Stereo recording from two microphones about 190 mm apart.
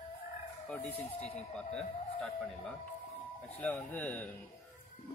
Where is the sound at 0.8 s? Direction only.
35° left (ahead or behind).